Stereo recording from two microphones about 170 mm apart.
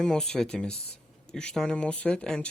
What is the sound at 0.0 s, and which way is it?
Speech, 5° left (ahead or behind).